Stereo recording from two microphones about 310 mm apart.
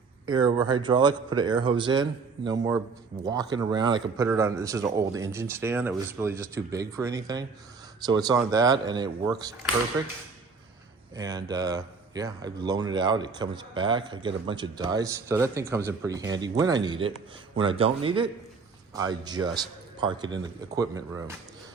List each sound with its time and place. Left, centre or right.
0.3 s speech: centre
11.1 s speech: centre